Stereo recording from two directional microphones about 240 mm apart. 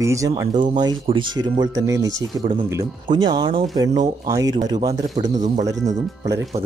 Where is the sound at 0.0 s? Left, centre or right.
Centre.